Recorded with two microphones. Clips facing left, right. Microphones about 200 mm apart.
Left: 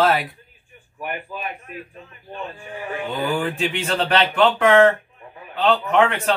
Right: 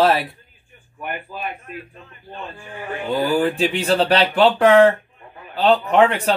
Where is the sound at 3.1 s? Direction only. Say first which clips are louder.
Right 6 dB; 35° right (ahead or behind).